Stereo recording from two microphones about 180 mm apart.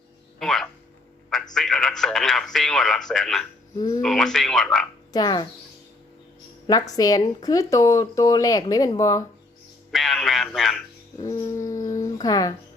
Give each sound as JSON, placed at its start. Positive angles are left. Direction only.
{"t": 0.3, "sound": "speech", "side_deg": 0}
{"t": 3.8, "sound": "speech", "side_deg": 20}
{"t": 4.0, "sound": "speech", "side_deg": 0}
{"t": 5.1, "sound": "speech", "side_deg": 20}
{"t": 6.7, "sound": "speech", "side_deg": 20}
{"t": 9.9, "sound": "speech", "side_deg": 0}
{"t": 11.2, "sound": "a sound", "side_deg": 15}